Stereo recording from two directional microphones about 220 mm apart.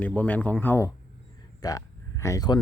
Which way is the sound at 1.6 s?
15° left (ahead or behind).